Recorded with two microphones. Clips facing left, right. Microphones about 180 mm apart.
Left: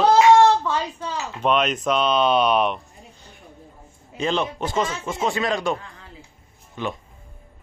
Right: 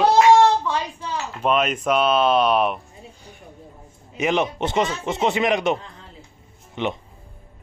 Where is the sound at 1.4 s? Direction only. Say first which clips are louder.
Even; 5° right (ahead or behind).